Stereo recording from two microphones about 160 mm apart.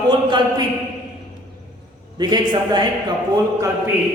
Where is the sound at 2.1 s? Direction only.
25° right (ahead or behind).